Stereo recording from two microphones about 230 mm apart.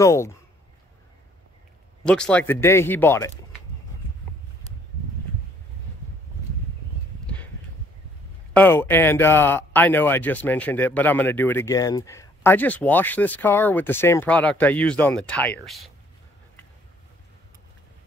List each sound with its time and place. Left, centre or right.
0.0 s speech: centre
2.0 s speech: centre
8.5 s speech: centre